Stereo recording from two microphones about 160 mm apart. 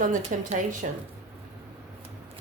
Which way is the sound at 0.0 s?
55° right (ahead or behind).